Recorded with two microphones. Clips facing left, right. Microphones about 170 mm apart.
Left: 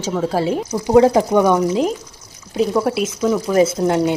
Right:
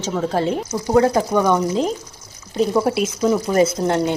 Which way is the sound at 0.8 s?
20° left (ahead or behind).